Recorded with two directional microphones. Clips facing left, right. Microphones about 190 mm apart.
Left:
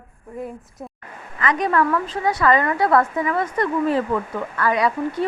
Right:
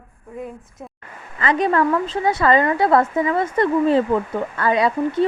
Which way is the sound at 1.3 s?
30° right (ahead or behind).